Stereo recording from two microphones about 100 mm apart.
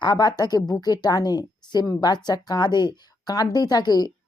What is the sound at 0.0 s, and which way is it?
A woman's voice, 45° left (ahead or behind).